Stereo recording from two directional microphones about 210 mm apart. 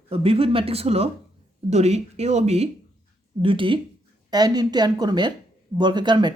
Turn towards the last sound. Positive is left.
turn(degrees=-20)  # may be behind; listen again after turning